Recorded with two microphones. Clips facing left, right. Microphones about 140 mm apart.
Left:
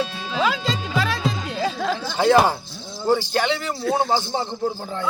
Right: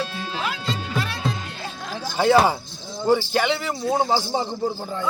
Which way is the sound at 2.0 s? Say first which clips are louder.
Right 2 dB; 10° right (ahead or behind).